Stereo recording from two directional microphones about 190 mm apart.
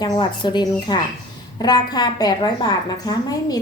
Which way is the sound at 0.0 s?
25° left (ahead or behind).